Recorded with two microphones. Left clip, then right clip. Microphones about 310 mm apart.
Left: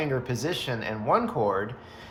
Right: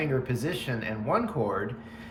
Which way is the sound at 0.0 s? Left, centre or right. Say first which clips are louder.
Left 1 dB; centre.